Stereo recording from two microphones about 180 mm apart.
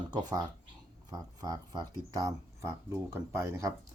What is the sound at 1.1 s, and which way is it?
Speech, 20° right (ahead or behind).